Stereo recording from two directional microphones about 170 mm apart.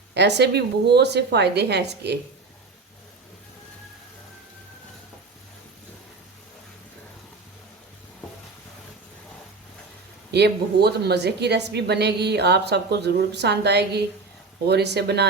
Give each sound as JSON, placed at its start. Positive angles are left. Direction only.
{"t": 0.1, "sound": "a woman's voice", "side_deg": -80}
{"t": 10.3, "sound": "a woman's voice", "side_deg": -75}